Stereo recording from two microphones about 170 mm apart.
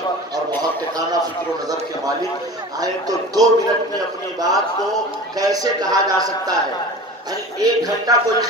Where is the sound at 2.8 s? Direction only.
20° right (ahead or behind).